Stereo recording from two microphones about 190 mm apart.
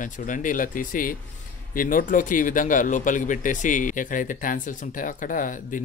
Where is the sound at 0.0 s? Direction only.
45° left (ahead or behind).